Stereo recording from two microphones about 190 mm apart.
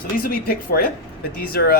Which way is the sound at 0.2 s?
50° left (ahead or behind).